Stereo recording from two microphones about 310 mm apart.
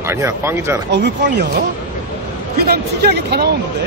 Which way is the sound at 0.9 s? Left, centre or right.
Right.